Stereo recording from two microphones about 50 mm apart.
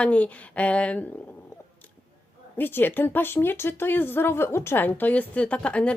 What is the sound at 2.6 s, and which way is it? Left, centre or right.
Speech, left.